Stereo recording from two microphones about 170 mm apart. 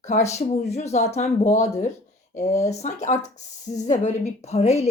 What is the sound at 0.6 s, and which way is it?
Speech, 40° left (ahead or behind).